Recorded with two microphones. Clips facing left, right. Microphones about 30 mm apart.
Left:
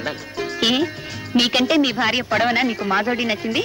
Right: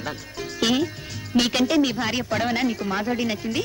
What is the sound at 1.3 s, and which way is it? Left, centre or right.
Speech, left.